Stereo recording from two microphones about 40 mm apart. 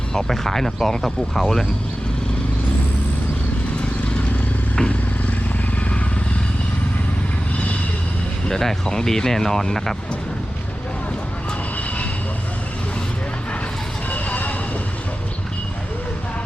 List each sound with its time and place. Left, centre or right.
0.3 s speech: centre
8.4 s speech: centre
14.1 s music: left